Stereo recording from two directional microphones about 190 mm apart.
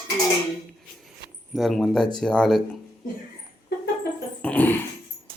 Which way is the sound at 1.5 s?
Centre (ahead or behind).